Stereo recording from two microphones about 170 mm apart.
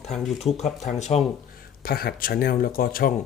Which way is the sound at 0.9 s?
50° left (ahead or behind).